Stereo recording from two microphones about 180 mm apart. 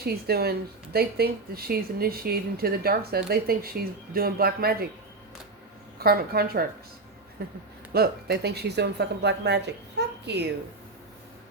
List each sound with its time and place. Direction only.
0.0 s speech: 60° right (ahead or behind)
6.0 s speech: 60° right (ahead or behind)
10.0 s a sound: 70° right (ahead or behind)